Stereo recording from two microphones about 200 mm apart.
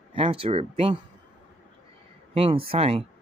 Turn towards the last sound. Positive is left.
turn(degrees=-30)  # may be behind; listen again after turning